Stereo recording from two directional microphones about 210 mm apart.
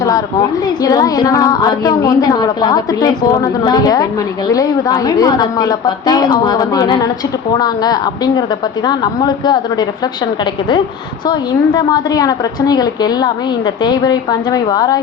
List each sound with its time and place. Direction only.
0.8 s a woman's voice: 15° left (ahead or behind)
11.3 s a woman's voice: 20° left (ahead or behind)